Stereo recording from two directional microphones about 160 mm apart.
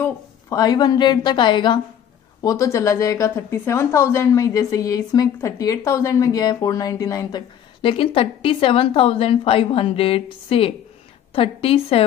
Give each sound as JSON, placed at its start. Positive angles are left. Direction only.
{"t": 0.0, "sound": "a woman's voice", "side_deg": 20}